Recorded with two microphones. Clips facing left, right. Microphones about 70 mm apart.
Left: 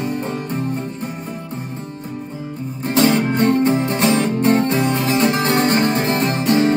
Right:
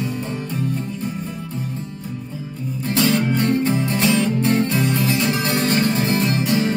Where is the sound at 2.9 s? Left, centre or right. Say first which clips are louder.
Left 3 dB; left.